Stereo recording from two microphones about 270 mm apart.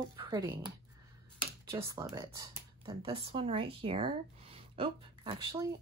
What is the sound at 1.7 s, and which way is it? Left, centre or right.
Speech, centre.